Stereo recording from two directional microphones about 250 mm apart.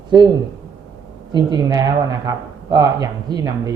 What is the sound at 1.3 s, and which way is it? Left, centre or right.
Speech, centre.